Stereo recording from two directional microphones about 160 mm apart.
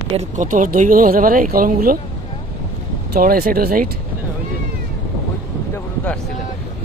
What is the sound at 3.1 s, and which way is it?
Speech, 70° right (ahead or behind).